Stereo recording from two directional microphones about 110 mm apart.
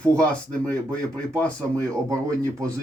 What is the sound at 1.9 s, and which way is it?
Speech, 30° right (ahead or behind).